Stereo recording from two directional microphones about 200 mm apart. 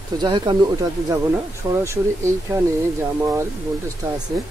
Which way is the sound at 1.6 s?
10° right (ahead or behind).